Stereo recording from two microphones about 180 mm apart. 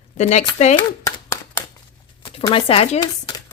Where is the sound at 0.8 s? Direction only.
20° left (ahead or behind).